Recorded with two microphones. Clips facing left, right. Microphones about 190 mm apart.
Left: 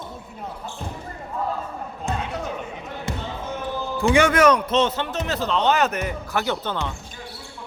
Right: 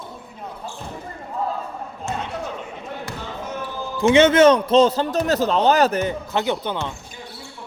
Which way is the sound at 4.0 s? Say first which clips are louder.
Right 4 dB; 20° right (ahead or behind).